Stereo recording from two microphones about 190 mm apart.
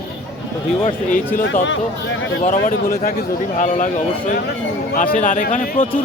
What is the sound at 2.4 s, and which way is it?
Speech, 50° left (ahead or behind).